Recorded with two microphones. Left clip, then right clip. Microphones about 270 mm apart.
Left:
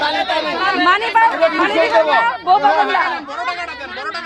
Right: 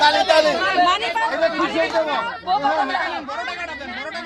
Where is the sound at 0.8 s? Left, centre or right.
Left.